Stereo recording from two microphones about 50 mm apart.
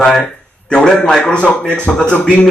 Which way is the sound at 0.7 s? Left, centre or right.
Centre.